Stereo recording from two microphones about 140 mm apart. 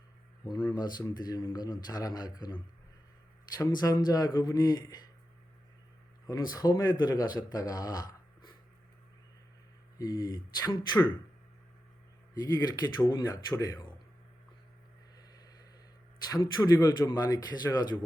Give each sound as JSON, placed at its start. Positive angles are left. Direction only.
{"t": 0.7, "sound": "speech", "side_deg": 30}
{"t": 3.6, "sound": "speech", "side_deg": 25}
{"t": 6.2, "sound": "speech", "side_deg": 25}
{"t": 10.0, "sound": "speech", "side_deg": 25}
{"t": 12.3, "sound": "speech", "side_deg": 30}
{"t": 15.3, "sound": "a sound", "side_deg": 30}
{"t": 16.3, "sound": "speech", "side_deg": 25}